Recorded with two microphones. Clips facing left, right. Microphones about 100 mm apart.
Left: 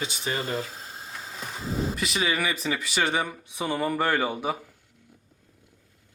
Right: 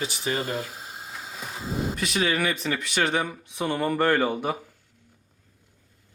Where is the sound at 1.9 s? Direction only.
Centre (ahead or behind).